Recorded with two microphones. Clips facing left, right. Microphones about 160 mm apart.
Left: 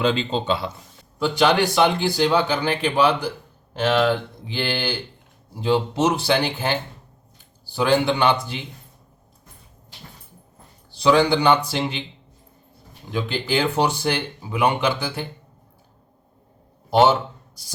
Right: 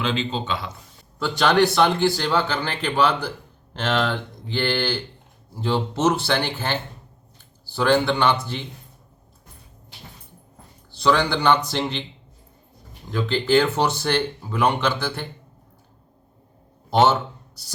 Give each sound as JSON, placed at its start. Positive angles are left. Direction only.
{"t": 0.0, "sound": "speech", "side_deg": 35}
{"t": 1.2, "sound": "a man's voice", "side_deg": 10}
{"t": 10.9, "sound": "a man's voice", "side_deg": 15}
{"t": 13.1, "sound": "a man's voice", "side_deg": 15}
{"t": 16.9, "sound": "a man's voice", "side_deg": 10}